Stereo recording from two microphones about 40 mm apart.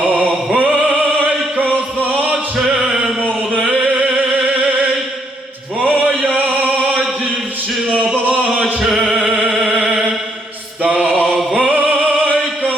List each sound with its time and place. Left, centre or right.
0.2 s music: right
2.0 s chant: right
2.6 s music: centre
3.5 s a sound: left
4.1 s music: centre
5.8 s chant: right
8.1 s a sound: right
8.6 s music: centre
10.8 s mantra: right